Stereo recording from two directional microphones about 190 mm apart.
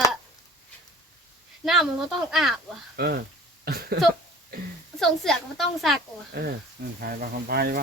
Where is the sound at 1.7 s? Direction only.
Centre (ahead or behind).